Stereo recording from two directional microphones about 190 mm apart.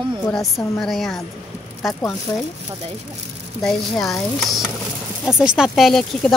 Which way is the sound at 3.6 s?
Centre (ahead or behind).